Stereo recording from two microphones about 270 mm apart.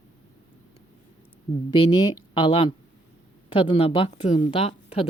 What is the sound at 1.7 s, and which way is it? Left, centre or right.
Speech, centre.